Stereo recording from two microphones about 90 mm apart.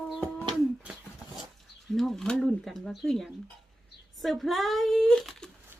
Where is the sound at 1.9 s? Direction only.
5° left (ahead or behind).